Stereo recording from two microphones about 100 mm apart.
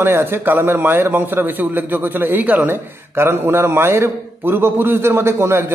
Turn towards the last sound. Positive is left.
turn(degrees=-25)  # may be behind; listen again after turning